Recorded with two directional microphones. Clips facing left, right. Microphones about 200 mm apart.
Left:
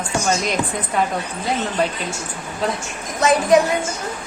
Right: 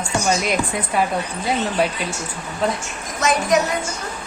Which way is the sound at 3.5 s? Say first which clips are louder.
Left 4 dB; 30° left (ahead or behind).